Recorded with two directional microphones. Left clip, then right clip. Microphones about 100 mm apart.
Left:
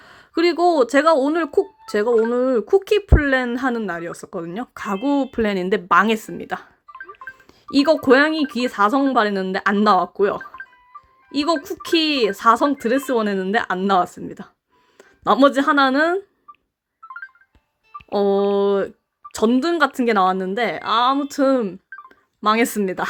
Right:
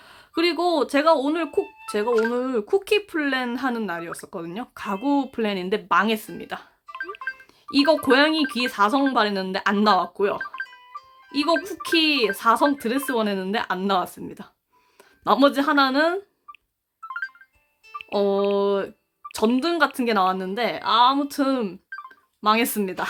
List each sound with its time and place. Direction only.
0.0 s speech: 40° left (ahead or behind)
2.3 s speech: 40° left (ahead or behind); by 6.7 s 60° left (ahead or behind)
6.8 s music: 15° right (ahead or behind)
7.7 s speech: 55° left (ahead or behind)
10.3 s music: 15° right (ahead or behind)
11.3 s speech: 50° left (ahead or behind)
17.1 s music: 15° right (ahead or behind)
18.1 s speech: 50° left (ahead or behind)
22.4 s speech: 50° left (ahead or behind)